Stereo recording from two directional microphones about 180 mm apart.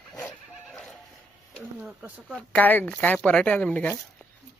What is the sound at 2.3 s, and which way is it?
Speech, 10° left (ahead or behind).